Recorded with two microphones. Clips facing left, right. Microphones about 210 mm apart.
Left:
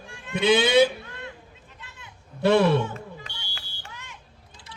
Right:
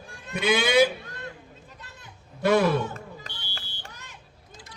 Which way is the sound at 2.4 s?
30° left (ahead or behind).